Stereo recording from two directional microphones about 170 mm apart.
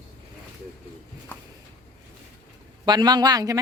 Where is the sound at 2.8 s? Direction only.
25° right (ahead or behind).